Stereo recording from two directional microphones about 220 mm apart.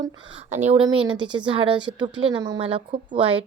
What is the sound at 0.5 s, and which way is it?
A woman's voice, 30° right (ahead or behind).